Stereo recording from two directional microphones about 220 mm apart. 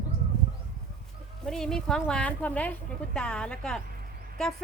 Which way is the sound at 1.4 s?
Centre (ahead or behind).